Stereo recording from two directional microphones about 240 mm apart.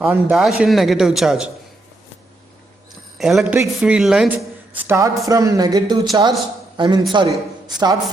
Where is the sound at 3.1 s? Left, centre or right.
Centre.